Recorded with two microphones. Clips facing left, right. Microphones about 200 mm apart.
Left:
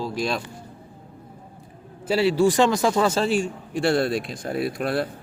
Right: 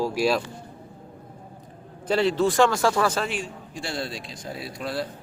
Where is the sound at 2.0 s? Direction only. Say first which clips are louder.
Left 3 dB; 5° left (ahead or behind); by 3.3 s 25° left (ahead or behind).